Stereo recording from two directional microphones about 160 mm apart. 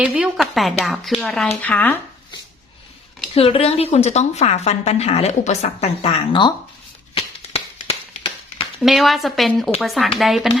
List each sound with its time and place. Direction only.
0.0 s a woman's voice: 5° right (ahead or behind); by 2.0 s 10° left (ahead or behind)
3.3 s a woman's voice: 35° left (ahead or behind)
7.1 s a sound: 40° left (ahead or behind)
8.8 s a woman's voice: centre (ahead or behind)